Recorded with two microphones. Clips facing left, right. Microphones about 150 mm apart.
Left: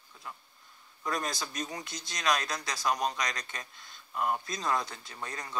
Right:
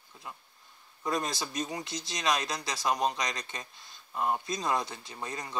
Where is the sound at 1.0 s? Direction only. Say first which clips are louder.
Right 2 dB; 25° right (ahead or behind).